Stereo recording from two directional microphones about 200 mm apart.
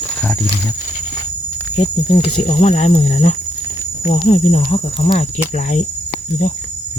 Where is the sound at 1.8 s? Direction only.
25° left (ahead or behind).